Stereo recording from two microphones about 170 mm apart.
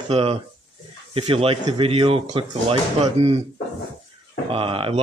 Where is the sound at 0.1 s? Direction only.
35° right (ahead or behind).